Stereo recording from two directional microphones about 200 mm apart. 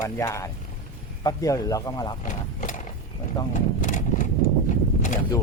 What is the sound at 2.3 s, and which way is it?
Speech, 40° left (ahead or behind).